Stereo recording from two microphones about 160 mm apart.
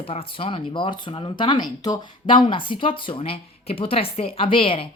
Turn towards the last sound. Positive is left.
turn(degrees=35)  # may be behind; listen again after turning